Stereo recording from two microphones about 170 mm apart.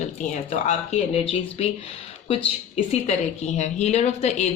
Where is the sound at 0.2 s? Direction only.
40° left (ahead or behind).